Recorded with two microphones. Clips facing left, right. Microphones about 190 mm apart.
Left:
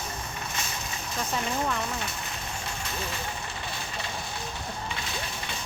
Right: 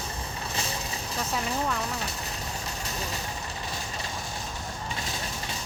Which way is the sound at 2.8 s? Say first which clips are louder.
Even; 40° right (ahead or behind).